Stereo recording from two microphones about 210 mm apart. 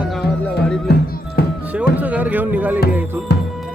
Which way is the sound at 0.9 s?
50° left (ahead or behind).